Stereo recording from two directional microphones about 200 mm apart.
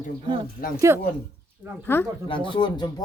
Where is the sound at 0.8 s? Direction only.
15° right (ahead or behind).